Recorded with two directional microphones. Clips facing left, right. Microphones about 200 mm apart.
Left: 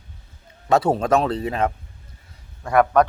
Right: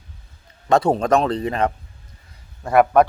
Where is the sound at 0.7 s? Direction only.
5° left (ahead or behind).